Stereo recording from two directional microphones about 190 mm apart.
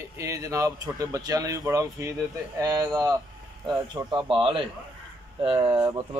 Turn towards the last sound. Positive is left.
turn(degrees=-20)  # may be behind; listen again after turning